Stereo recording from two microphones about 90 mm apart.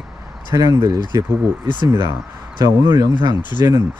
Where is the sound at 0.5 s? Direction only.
40° right (ahead or behind).